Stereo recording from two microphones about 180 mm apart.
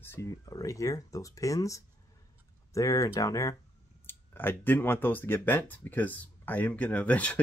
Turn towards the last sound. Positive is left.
turn(degrees=10)  # may be behind; listen again after turning